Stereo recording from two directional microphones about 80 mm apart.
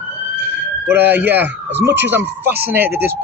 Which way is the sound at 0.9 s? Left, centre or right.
Right.